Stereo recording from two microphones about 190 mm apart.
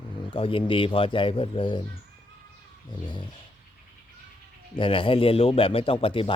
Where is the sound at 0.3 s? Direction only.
30° left (ahead or behind).